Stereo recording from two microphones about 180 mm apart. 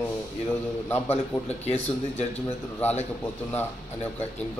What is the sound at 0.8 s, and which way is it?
Speech, 10° left (ahead or behind).